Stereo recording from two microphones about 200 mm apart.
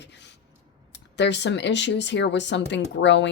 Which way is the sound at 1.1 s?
60° left (ahead or behind).